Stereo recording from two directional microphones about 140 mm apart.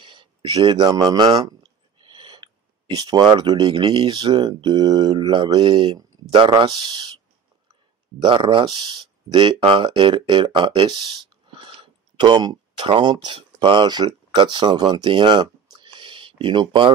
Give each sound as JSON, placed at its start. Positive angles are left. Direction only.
{"t": 0.0, "sound": "a sound", "side_deg": -35}
{"t": 3.0, "sound": "speech", "side_deg": -30}
{"t": 8.2, "sound": "speech", "side_deg": -35}